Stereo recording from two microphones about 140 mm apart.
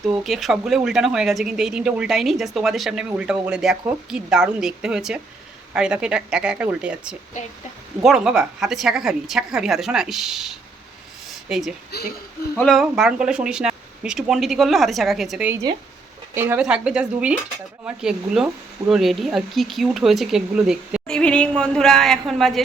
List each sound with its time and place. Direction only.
0.0 s speech: centre (ahead or behind)
16.3 s speech: 15° right (ahead or behind)
21.1 s a woman's voice: 5° left (ahead or behind)